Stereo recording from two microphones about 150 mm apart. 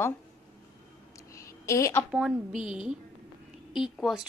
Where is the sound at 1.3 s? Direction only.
20° left (ahead or behind).